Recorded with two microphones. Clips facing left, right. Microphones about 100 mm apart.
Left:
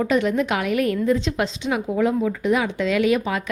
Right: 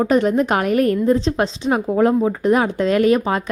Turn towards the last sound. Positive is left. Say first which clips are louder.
# right 4 dB
turn(degrees=-40)  # may be behind; listen again after turning